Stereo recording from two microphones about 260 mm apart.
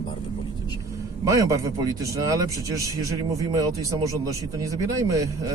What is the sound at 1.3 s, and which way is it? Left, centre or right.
A man's voice, centre.